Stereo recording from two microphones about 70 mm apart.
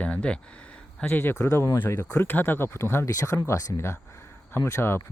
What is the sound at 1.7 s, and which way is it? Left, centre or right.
Speech, left.